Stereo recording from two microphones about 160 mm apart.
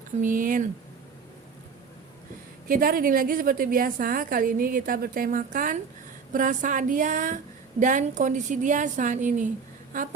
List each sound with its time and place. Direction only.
0.2 s a woman's voice: 55° right (ahead or behind)
2.6 s a woman's voice: 65° right (ahead or behind)